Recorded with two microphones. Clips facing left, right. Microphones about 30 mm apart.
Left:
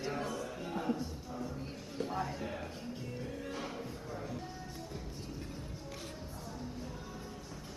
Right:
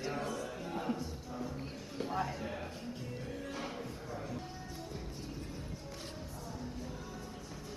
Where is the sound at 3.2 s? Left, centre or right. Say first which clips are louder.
Left 1 dB; centre.